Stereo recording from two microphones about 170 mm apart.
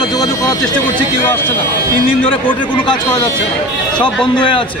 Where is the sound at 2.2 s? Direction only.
30° left (ahead or behind).